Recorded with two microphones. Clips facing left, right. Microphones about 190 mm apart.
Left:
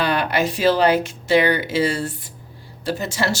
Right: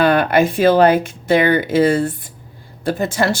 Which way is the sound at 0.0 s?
50° right (ahead or behind).